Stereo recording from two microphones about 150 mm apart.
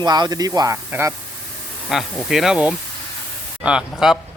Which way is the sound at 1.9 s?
Centre (ahead or behind).